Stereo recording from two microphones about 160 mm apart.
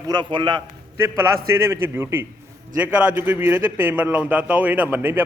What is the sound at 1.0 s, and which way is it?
A man's voice, 15° right (ahead or behind).